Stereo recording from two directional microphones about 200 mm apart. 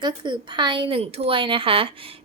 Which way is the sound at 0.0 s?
25° right (ahead or behind).